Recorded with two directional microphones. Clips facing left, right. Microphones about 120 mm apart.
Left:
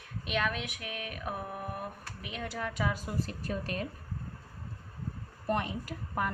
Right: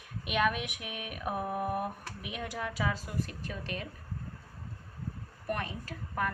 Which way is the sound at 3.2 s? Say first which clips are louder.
Left 4 dB; 40° left (ahead or behind).